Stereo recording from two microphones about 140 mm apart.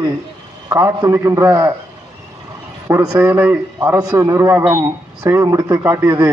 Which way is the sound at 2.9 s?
25° right (ahead or behind).